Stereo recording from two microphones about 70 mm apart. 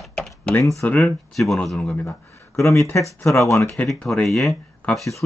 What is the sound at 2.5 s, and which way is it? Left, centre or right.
Speech, left.